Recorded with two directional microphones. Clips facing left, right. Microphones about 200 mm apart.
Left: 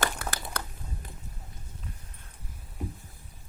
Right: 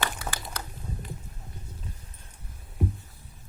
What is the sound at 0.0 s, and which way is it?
Crumpling, 55° left (ahead or behind).